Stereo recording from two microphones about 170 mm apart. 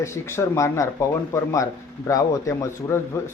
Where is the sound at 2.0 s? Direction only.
20° left (ahead or behind).